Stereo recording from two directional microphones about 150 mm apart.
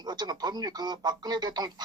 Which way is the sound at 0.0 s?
25° right (ahead or behind).